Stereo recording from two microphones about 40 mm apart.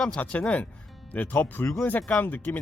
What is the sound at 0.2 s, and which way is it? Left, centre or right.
Speech, left.